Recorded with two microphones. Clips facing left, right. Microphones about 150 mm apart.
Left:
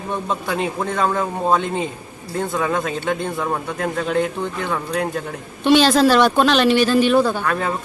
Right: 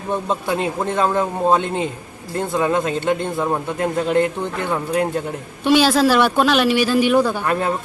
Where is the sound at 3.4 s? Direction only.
20° right (ahead or behind).